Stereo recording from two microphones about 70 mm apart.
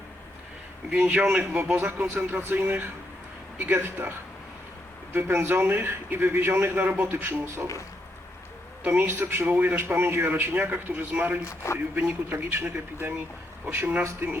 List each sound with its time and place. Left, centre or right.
0.9 s a man's voice: centre; by 7.7 s right
8.8 s a man's voice: right
11.4 s speech: left
11.9 s a man's voice: right